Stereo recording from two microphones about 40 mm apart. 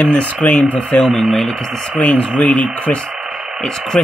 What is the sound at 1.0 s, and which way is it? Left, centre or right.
Speech, centre.